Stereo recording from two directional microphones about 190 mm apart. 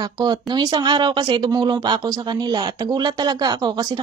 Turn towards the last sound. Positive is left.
turn(degrees=-20)  # may be behind; listen again after turning